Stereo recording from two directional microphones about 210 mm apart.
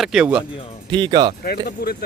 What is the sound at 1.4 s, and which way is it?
Speech, 45° left (ahead or behind).